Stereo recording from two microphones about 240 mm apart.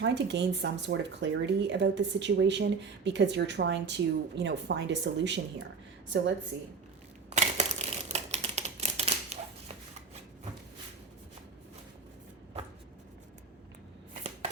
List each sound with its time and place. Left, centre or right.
0.0 s speech: right
6.5 s speech: right
7.3 s typewriter: right